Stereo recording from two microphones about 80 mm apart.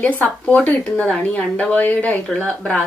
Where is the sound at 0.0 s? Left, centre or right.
Left.